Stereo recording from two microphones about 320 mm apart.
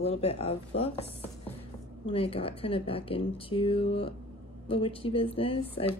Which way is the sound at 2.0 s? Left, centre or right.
Centre.